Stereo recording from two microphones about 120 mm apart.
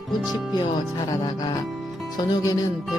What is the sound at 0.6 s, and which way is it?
Music, 35° left (ahead or behind).